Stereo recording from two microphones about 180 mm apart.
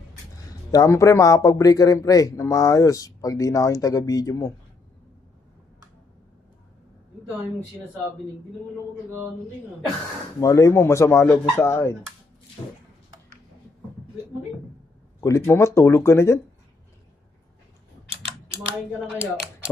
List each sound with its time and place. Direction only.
0.7 s speech: 20° left (ahead or behind)
10.4 s speech: 15° left (ahead or behind)
15.1 s speech: 15° left (ahead or behind)